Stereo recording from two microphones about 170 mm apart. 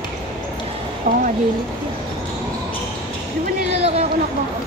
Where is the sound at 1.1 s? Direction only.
50° right (ahead or behind).